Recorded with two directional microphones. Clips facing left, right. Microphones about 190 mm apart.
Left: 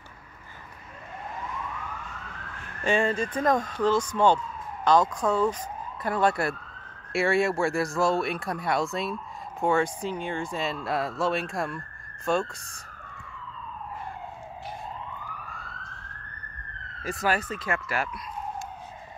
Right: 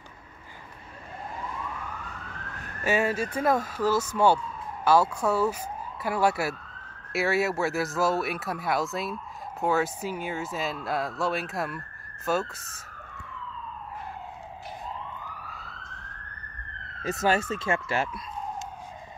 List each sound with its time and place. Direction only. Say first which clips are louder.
2.8 s speech: left 1 dB; 10° right (ahead or behind)
17.0 s speech: right 2 dB; 25° right (ahead or behind)